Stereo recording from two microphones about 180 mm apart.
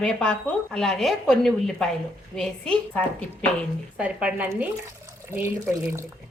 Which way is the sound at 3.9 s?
5° right (ahead or behind).